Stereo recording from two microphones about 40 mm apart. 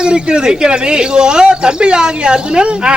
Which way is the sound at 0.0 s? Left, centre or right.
Right.